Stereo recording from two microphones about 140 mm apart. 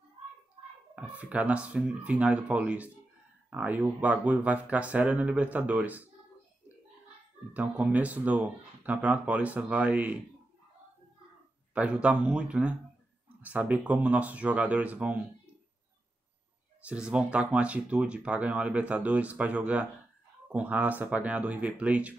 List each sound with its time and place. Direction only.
0.9 s speech: 10° right (ahead or behind)
7.5 s speech: 10° right (ahead or behind)
11.7 s speech: 10° right (ahead or behind)
16.8 s speech: 5° right (ahead or behind)